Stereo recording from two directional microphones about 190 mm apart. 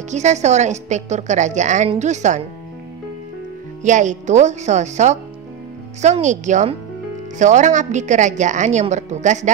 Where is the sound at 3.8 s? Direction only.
40° right (ahead or behind).